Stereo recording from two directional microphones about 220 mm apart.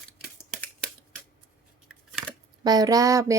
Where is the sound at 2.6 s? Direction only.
15° right (ahead or behind).